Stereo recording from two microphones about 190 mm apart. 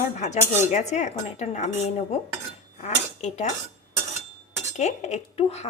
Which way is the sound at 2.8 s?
35° left (ahead or behind).